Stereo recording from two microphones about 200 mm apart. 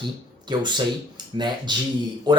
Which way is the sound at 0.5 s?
20° right (ahead or behind).